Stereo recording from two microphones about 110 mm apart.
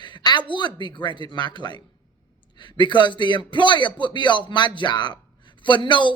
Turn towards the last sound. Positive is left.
turn(degrees=45)  # may be behind; listen again after turning